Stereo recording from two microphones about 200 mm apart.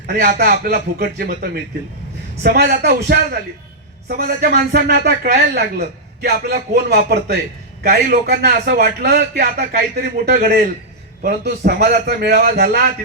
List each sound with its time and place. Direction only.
0.1 s a man's voice: 50° right (ahead or behind)